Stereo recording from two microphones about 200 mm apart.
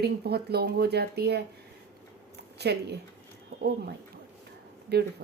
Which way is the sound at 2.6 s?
55° right (ahead or behind).